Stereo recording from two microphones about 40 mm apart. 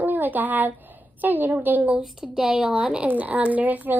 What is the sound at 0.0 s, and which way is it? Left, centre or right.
A woman's voice, right.